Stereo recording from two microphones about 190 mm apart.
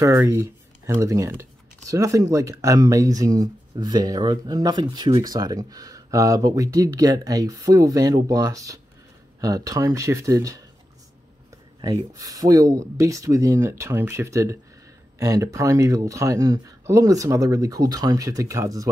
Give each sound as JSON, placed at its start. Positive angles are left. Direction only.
{"t": 0.0, "sound": "speech", "side_deg": -15}
{"t": 11.8, "sound": "speech", "side_deg": -20}